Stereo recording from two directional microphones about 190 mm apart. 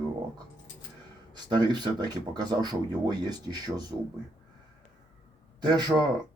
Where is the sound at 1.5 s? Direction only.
20° right (ahead or behind).